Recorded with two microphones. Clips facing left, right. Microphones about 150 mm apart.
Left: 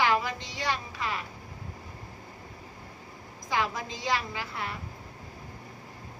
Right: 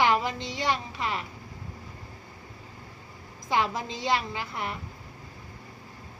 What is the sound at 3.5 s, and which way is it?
A woman's voice, 25° right (ahead or behind).